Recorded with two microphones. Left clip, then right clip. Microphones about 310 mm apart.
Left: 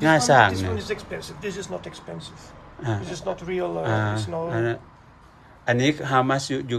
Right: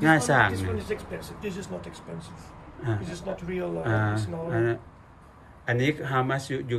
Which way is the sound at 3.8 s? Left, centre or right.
Centre.